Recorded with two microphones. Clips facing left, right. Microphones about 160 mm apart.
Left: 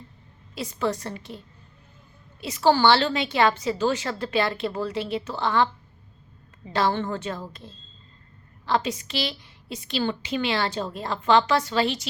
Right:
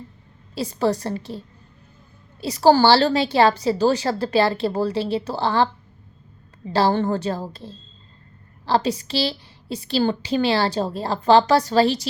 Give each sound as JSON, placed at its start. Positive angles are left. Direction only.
{"t": 0.5, "sound": "a woman's voice", "side_deg": -35}
{"t": 2.4, "sound": "a woman's voice", "side_deg": -35}
{"t": 6.7, "sound": "a woman's voice", "side_deg": -35}